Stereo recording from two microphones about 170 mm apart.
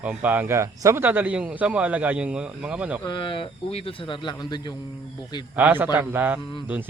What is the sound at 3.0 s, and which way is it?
Speech, 30° left (ahead or behind).